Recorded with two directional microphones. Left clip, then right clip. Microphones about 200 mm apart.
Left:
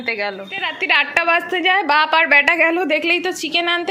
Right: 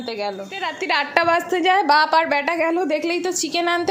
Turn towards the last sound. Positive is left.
turn(degrees=-25)  # may be behind; listen again after turning